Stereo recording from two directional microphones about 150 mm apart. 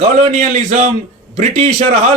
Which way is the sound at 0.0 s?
50° right (ahead or behind).